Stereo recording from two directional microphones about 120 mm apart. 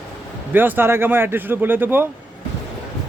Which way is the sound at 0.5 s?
15° right (ahead or behind).